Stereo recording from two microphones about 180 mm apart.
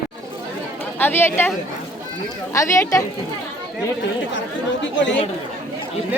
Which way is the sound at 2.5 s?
15° left (ahead or behind).